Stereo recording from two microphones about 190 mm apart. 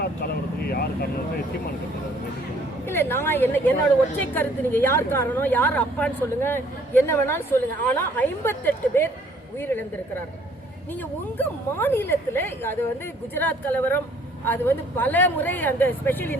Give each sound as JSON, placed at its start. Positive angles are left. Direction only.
{"t": 0.6, "sound": "speech", "side_deg": 55}
{"t": 2.8, "sound": "a woman's voice", "side_deg": 10}
{"t": 11.3, "sound": "a woman's voice", "side_deg": 10}